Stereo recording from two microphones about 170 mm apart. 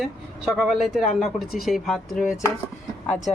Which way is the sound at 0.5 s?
Centre (ahead or behind).